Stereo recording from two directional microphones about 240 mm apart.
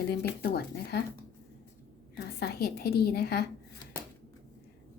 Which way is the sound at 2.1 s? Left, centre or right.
Left.